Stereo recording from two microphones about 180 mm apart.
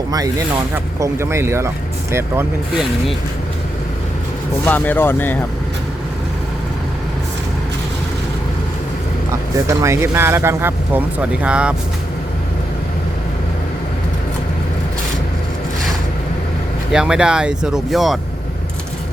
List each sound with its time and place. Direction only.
0.1 s speech: 20° right (ahead or behind)
4.6 s speech: 10° left (ahead or behind)
9.6 s speech: 15° right (ahead or behind)
16.9 s speech: 5° right (ahead or behind)